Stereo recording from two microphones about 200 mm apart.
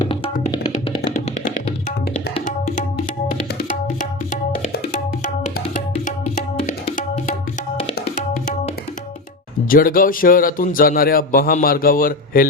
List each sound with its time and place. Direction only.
2.1 s tabla: 40° left (ahead or behind)
4.7 s music: 40° left (ahead or behind)
7.9 s tabla: 50° left (ahead or behind)
9.6 s a man's voice: 45° left (ahead or behind)